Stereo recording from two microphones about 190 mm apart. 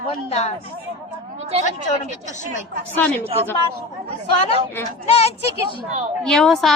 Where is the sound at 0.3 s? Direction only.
35° left (ahead or behind).